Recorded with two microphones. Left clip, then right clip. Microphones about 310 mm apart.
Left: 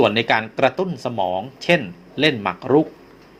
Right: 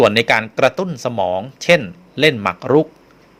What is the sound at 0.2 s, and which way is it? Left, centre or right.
Speech, right.